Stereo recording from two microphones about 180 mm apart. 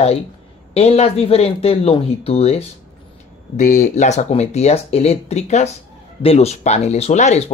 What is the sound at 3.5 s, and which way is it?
Speech, 45° left (ahead or behind).